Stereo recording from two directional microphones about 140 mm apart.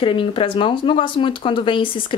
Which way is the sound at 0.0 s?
40° left (ahead or behind).